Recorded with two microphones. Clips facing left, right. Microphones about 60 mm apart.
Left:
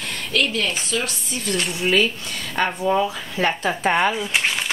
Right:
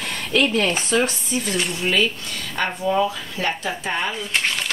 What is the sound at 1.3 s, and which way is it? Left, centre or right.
Speech, centre.